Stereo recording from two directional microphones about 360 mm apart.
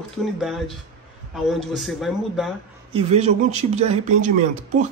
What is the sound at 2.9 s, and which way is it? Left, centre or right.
A man's voice, centre.